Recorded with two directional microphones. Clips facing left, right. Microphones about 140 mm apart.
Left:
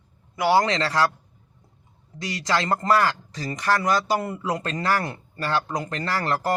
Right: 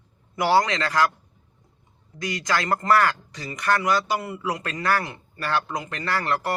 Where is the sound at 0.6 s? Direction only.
30° left (ahead or behind).